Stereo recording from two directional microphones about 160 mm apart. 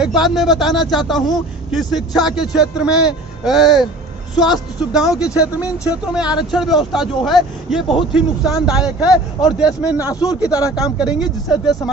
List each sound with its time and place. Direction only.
0.0 s speech: centre (ahead or behind)
10.1 s speech: 20° left (ahead or behind)
10.8 s speech: 5° right (ahead or behind)